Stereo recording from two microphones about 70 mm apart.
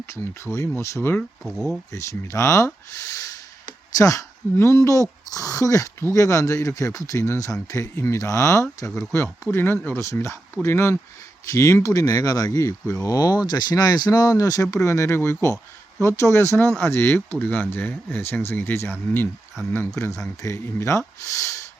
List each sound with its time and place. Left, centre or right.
0.0 s speech: left
1.5 s speech: centre
1.9 s speech: left
3.9 s speech: left
6.0 s speech: left
9.2 s speech: left
10.0 s speech: left
14.8 s speech: left
19.9 s speech: left